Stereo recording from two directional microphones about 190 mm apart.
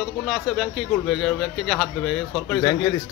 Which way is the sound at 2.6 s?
20° left (ahead or behind).